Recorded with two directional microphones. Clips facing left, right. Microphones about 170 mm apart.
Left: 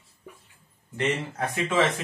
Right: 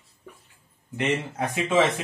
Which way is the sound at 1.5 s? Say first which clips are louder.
Right 2 dB; 15° right (ahead or behind).